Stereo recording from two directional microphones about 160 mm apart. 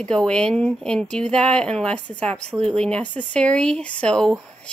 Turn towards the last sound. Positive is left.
turn(degrees=5)  # may be behind; listen again after turning